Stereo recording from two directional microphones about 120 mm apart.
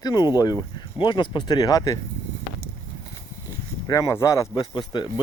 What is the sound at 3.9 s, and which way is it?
Speech, 25° left (ahead or behind).